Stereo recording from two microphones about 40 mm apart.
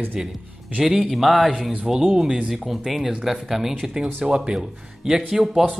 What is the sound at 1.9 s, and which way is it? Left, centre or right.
Speech, centre.